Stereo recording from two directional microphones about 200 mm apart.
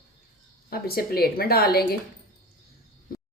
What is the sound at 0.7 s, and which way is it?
Speech, 50° left (ahead or behind).